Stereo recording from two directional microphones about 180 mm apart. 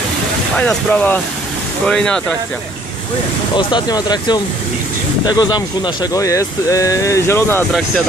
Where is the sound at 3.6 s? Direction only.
25° left (ahead or behind).